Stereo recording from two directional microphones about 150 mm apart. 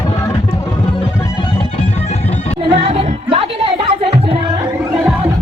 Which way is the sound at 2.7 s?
40° right (ahead or behind).